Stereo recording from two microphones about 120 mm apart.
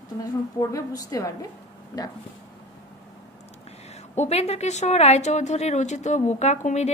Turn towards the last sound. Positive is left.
turn(degrees=80)